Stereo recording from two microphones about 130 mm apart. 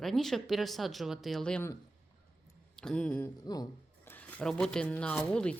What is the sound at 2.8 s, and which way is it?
Speech, 5° left (ahead or behind).